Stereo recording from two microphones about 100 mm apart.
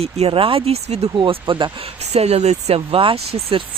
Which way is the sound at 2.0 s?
90° right.